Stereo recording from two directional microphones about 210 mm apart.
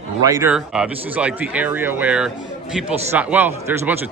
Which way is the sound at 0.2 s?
15° right (ahead or behind).